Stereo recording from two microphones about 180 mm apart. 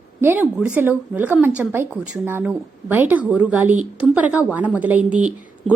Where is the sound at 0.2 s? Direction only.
10° right (ahead or behind).